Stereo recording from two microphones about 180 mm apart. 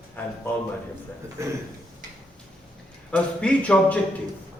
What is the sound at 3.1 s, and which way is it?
Speech, 5° left (ahead or behind).